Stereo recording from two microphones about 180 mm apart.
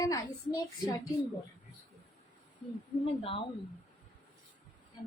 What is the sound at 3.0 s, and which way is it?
Speech, 30° left (ahead or behind).